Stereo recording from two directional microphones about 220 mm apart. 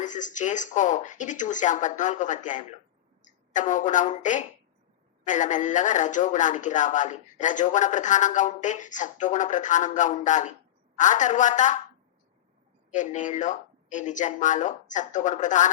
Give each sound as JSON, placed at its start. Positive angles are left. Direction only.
{"t": 0.0, "sound": "speech", "side_deg": 35}
{"t": 12.9, "sound": "speech", "side_deg": 35}